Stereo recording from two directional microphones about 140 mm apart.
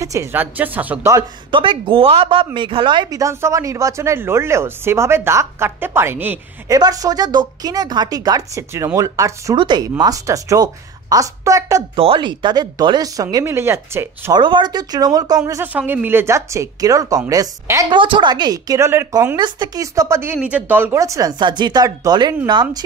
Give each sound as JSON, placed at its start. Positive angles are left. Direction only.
{"t": 0.0, "sound": "a woman's voice", "side_deg": -20}
{"t": 1.5, "sound": "a woman's voice", "side_deg": -35}
{"t": 6.7, "sound": "a woman's voice", "side_deg": -25}
{"t": 11.9, "sound": "a woman's voice", "side_deg": -40}
{"t": 14.3, "sound": "a woman's voice", "side_deg": -35}
{"t": 17.8, "sound": "a woman's voice", "side_deg": -35}
{"t": 19.3, "sound": "a woman's voice", "side_deg": -30}